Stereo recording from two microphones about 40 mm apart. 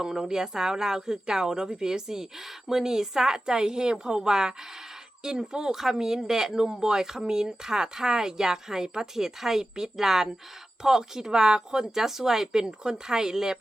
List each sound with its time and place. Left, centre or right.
0.2 s speech: centre